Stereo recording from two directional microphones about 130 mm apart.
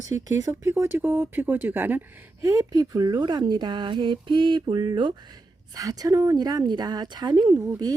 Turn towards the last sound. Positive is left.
turn(degrees=-30)  # may be behind; listen again after turning